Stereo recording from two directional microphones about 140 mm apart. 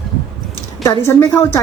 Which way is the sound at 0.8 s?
25° left (ahead or behind).